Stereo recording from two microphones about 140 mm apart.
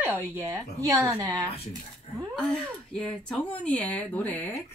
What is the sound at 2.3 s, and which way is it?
Speech, 5° left (ahead or behind).